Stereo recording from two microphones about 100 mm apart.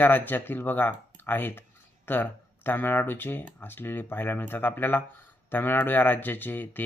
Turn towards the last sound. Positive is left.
turn(degrees=20)  # may be behind; listen again after turning